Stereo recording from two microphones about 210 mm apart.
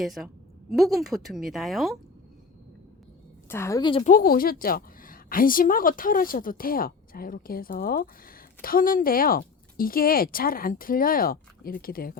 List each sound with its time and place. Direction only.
0.0 s a woman's voice: centre (ahead or behind)
3.5 s a woman's voice: 15° left (ahead or behind)
4.0 s a woman's voice: 40° left (ahead or behind)